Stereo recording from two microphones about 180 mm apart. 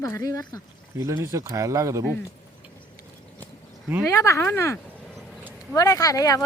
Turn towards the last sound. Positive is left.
turn(degrees=20)  # may be behind; listen again after turning